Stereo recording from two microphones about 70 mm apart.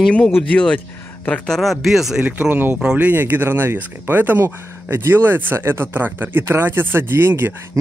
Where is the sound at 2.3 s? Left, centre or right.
Right.